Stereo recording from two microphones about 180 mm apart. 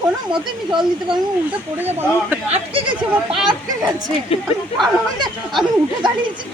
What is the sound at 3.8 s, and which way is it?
Speech, 20° right (ahead or behind).